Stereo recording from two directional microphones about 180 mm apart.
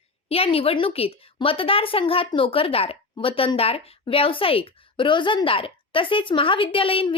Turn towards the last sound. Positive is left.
turn(degrees=30)  # may be behind; listen again after turning